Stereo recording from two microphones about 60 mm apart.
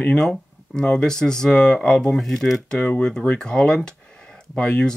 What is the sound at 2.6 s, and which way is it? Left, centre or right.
Speech, centre.